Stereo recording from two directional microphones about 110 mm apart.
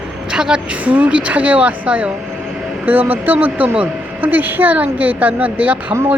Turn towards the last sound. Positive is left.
turn(degrees=-25)  # may be behind; listen again after turning